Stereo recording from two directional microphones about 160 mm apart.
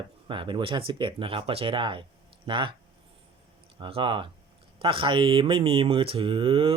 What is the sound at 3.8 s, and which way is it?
Speech, 35° right (ahead or behind).